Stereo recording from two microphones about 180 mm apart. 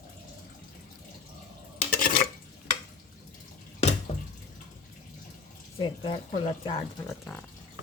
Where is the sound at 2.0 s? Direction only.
50° left (ahead or behind).